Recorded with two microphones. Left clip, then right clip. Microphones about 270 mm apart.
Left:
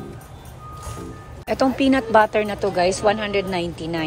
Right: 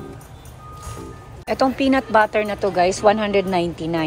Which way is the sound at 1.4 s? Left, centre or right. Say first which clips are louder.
Right 1 dB; centre.